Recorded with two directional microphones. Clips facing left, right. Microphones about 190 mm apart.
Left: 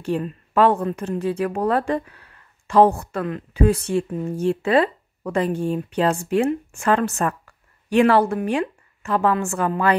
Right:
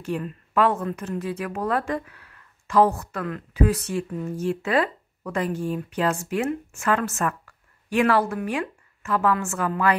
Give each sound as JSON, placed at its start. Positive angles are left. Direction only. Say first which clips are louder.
{"t": 0.0, "sound": "speech", "louder": "left 4 dB", "side_deg": 30}